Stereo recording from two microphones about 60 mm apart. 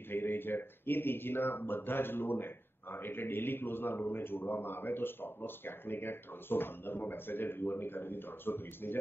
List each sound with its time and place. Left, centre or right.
0.1 s speech: left